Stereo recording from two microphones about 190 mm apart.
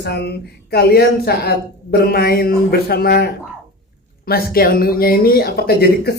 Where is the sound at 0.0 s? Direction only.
60° left (ahead or behind).